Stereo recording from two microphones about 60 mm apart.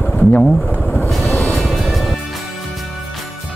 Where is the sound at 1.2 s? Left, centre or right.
Left.